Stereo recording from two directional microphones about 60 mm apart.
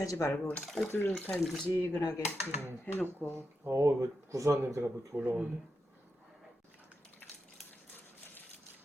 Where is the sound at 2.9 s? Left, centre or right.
Left.